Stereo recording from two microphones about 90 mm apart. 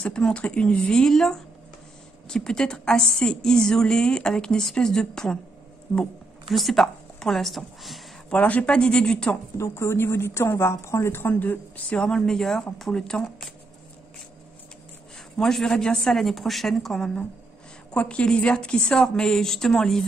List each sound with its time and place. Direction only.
0.0 s a woman's voice: 10° left (ahead or behind)
6.5 s a woman's voice: centre (ahead or behind)
8.3 s a woman's voice: 15° left (ahead or behind)
9.6 s a woman's voice: 30° left (ahead or behind); by 13.3 s 10° left (ahead or behind)
15.3 s a woman's voice: 5° left (ahead or behind)